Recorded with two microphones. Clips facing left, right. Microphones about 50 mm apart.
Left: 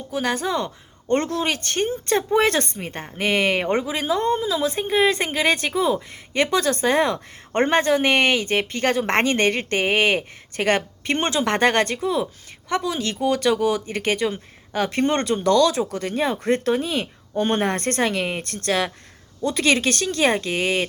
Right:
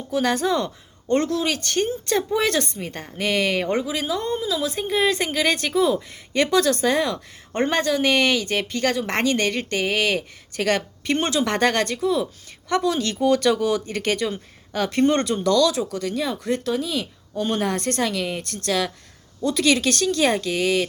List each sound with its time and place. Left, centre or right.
0.1 s speech: centre
1.0 s speech: left